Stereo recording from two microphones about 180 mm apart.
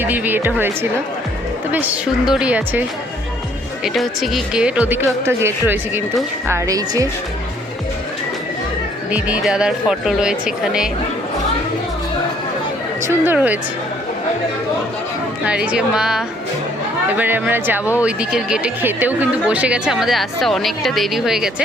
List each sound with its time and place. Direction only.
0.0 s speech: 10° right (ahead or behind)
3.8 s speech: centre (ahead or behind); by 7.1 s 20° right (ahead or behind)
9.1 s speech: 5° right (ahead or behind)
13.0 s speech: 10° right (ahead or behind)
15.4 s speech: 5° right (ahead or behind)